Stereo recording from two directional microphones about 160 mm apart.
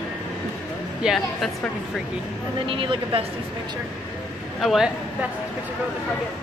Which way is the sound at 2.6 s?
30° right (ahead or behind).